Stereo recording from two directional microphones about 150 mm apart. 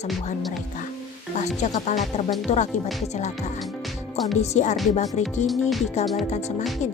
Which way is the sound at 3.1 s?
50° left (ahead or behind).